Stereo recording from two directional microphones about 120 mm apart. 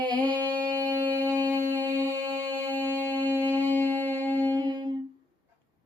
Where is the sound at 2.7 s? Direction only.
15° left (ahead or behind).